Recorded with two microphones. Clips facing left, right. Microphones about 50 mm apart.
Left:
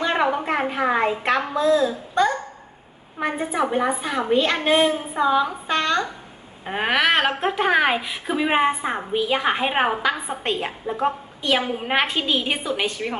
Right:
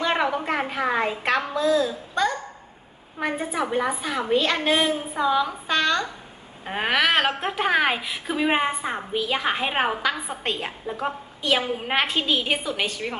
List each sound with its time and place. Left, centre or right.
0.3 s a woman's voice: centre
1.5 s a child's voice: left
3.2 s a woman's voice: centre
6.7 s a woman's voice: centre